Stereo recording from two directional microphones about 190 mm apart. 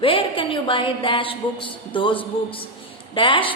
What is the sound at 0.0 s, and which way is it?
A woman's voice, 30° left (ahead or behind).